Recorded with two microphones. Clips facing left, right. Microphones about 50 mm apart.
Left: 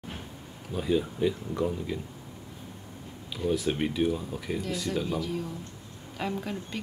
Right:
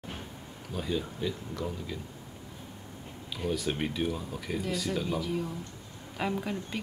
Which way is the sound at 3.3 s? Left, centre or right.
Centre.